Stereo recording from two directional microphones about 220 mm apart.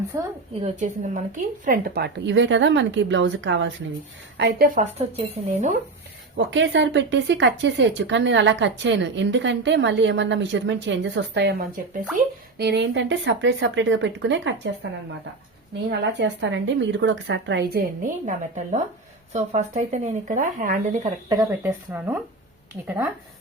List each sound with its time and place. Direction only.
0.1 s speech: 15° right (ahead or behind)
0.6 s speech: 35° right (ahead or behind); by 3.8 s 55° right (ahead or behind)
4.4 s speech: 45° right (ahead or behind); by 5.7 s 30° right (ahead or behind)
6.3 s speech: 55° right (ahead or behind)
15.9 s speech: 55° right (ahead or behind); by 21.1 s 35° right (ahead or behind)
21.2 s speech: 15° right (ahead or behind)